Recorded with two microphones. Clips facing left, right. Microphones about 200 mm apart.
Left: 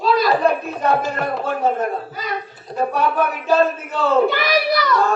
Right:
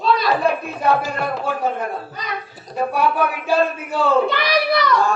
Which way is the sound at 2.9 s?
10° right (ahead or behind).